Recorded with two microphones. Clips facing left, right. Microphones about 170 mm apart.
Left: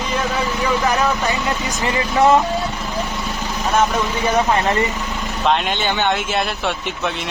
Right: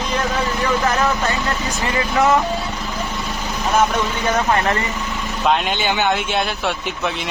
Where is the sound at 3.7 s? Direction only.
Centre (ahead or behind).